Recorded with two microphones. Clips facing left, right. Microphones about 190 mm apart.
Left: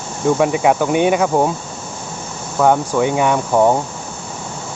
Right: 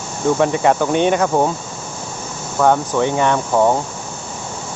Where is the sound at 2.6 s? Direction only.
10° left (ahead or behind).